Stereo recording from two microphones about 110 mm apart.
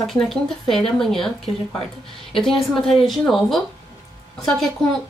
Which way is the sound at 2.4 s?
5° left (ahead or behind).